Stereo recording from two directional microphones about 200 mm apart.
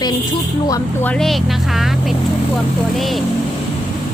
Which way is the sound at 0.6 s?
15° left (ahead or behind).